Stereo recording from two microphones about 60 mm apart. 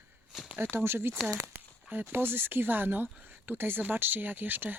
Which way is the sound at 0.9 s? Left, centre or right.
Right.